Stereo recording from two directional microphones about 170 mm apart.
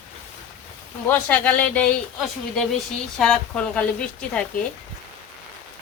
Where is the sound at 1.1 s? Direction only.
10° left (ahead or behind).